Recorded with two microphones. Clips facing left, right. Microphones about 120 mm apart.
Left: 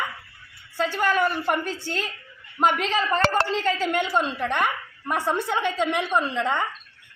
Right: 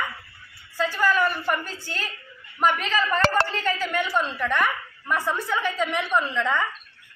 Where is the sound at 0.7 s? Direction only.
65° left (ahead or behind).